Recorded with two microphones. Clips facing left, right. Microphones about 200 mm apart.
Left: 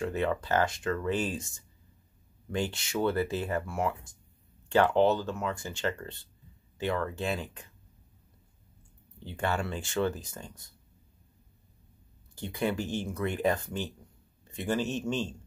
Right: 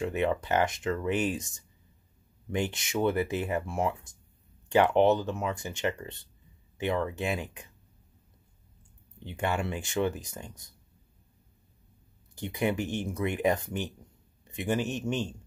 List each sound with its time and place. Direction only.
0.0 s speech: 15° right (ahead or behind)
9.2 s speech: 15° right (ahead or behind)
12.4 s speech: 15° right (ahead or behind)